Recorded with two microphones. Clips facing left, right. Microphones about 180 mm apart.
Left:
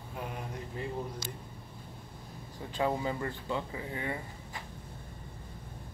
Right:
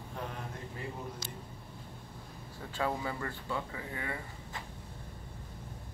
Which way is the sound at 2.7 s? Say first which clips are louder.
Left 3 dB; 20° left (ahead or behind).